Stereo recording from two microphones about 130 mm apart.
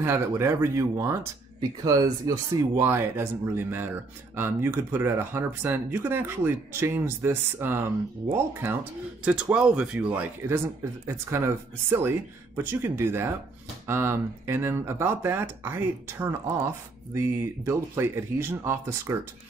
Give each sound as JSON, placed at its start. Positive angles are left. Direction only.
{"t": 0.0, "sound": "speech", "side_deg": -20}